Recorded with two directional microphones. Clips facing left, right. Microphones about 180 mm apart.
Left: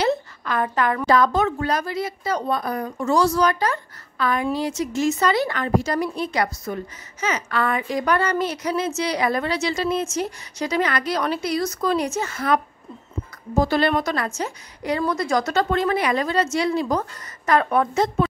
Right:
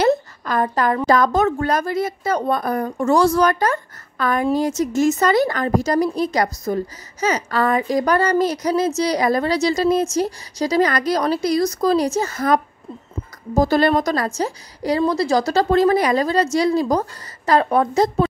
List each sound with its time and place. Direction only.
0.0 s a woman's voice: 40° right (ahead or behind)